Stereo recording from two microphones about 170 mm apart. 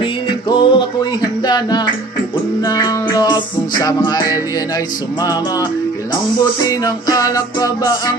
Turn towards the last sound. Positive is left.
turn(degrees=20)  # may be behind; listen again after turning